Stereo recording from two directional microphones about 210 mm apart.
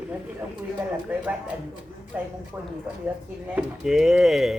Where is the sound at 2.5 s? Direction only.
5° right (ahead or behind).